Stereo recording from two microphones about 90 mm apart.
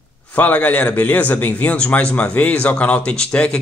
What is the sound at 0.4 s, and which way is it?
A man's voice, 15° left (ahead or behind).